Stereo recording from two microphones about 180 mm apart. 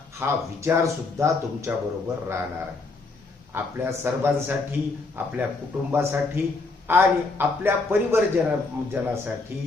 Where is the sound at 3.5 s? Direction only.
10° right (ahead or behind).